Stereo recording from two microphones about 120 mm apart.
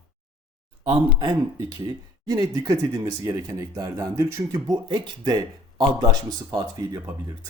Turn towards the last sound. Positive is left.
turn(degrees=-35)  # may be behind; listen again after turning